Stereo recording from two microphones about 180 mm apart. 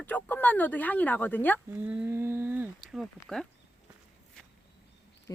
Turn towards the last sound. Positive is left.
turn(degrees=20)  # may be behind; listen again after turning